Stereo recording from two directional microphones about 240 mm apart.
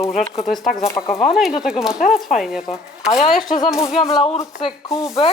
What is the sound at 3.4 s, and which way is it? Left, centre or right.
Speech, centre.